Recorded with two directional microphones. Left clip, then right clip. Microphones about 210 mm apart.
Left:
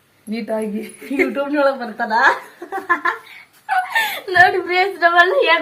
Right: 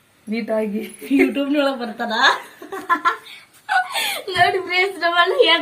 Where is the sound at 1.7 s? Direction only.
20° left (ahead or behind).